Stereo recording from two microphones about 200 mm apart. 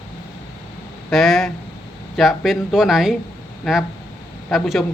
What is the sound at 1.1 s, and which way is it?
A man's voice, centre (ahead or behind).